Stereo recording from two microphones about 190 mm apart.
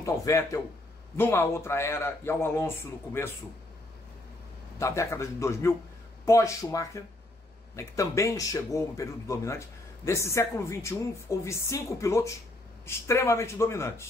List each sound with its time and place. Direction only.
0.0 s speech: 15° left (ahead or behind)
4.7 s speech: 15° left (ahead or behind)